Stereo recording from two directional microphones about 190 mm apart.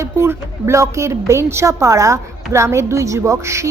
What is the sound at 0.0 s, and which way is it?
A woman's voice, 15° right (ahead or behind).